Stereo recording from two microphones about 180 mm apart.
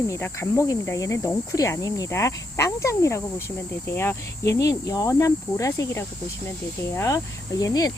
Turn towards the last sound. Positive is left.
turn(degrees=20)  # may be behind; listen again after turning